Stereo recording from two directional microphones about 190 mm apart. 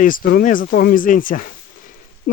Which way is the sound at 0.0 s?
45° left (ahead or behind).